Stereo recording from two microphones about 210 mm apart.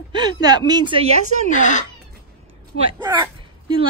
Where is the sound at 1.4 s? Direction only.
35° left (ahead or behind).